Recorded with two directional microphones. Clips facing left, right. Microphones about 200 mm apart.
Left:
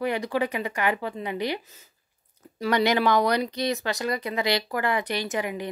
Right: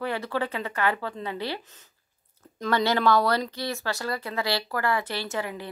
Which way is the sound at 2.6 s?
15° left (ahead or behind).